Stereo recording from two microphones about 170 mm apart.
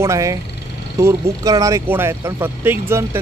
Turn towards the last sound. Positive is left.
turn(degrees=-15)  # may be behind; listen again after turning